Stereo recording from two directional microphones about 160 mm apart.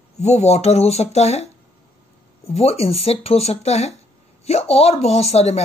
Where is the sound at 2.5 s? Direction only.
40° left (ahead or behind).